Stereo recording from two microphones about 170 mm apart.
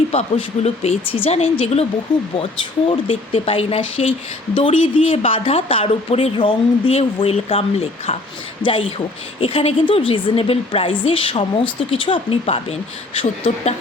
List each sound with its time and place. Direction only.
0.1 s speech: 40° left (ahead or behind)
2.1 s speech: 5° left (ahead or behind)
2.9 s speech: 35° left (ahead or behind)